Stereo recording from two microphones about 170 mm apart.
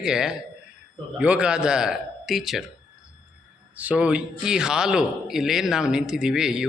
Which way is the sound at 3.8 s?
10° right (ahead or behind).